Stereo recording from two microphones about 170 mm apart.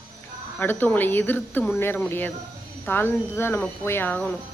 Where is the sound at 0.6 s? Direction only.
10° left (ahead or behind).